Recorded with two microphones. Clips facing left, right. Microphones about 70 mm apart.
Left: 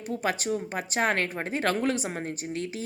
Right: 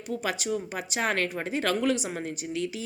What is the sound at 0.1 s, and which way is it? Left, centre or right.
Speech, left.